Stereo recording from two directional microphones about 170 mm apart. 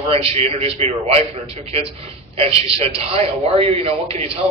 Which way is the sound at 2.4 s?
35° right (ahead or behind).